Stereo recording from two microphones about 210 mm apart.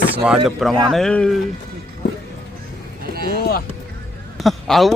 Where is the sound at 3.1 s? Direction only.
45° right (ahead or behind).